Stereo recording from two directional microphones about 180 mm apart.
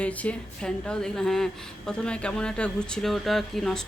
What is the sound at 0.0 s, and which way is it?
Speech, 5° left (ahead or behind).